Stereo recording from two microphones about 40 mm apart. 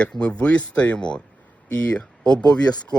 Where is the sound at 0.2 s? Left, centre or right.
Left.